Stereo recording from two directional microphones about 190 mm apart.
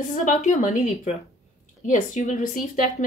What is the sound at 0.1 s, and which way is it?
A woman's voice, 40° left (ahead or behind).